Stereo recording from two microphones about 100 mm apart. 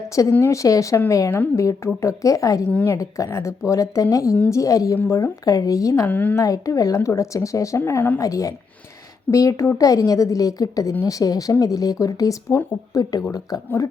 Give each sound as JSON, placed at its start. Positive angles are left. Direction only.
{"t": 0.1, "sound": "a woman's voice", "side_deg": 30}
{"t": 6.1, "sound": "a woman's voice", "side_deg": 15}
{"t": 6.4, "sound": "a woman's voice", "side_deg": 35}
{"t": 7.8, "sound": "speech", "side_deg": 20}
{"t": 8.2, "sound": "a woman's voice", "side_deg": 35}